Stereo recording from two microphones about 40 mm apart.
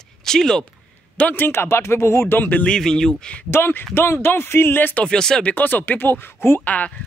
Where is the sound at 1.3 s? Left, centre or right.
Left.